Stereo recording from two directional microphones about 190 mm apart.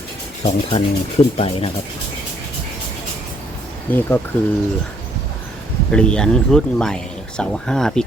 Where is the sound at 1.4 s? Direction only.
30° left (ahead or behind).